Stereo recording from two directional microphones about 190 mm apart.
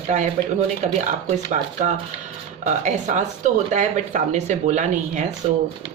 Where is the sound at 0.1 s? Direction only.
40° right (ahead or behind).